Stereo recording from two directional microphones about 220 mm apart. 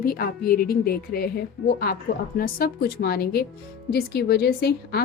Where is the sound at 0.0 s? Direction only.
45° left (ahead or behind).